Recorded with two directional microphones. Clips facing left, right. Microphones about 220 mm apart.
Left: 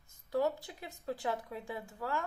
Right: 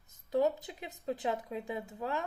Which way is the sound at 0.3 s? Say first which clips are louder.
Right 3 dB; 20° right (ahead or behind).